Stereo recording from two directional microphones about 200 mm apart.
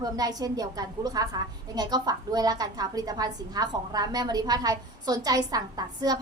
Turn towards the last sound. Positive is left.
turn(degrees=-20)  # may be behind; listen again after turning